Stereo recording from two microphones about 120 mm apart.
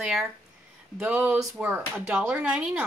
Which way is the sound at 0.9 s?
10° right (ahead or behind).